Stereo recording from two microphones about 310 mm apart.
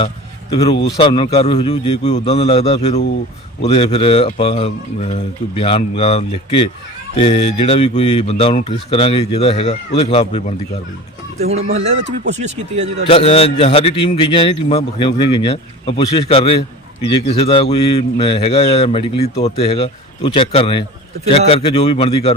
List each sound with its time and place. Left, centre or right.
0.5 s a man's voice: centre
11.3 s speech: right
13.1 s a man's voice: centre